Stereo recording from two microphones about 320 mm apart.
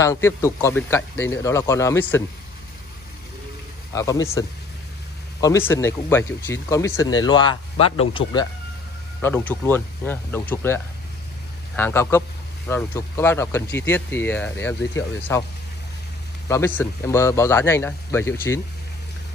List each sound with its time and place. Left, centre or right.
0.0 s speech: centre
3.9 s speech: centre
16.4 s speech: centre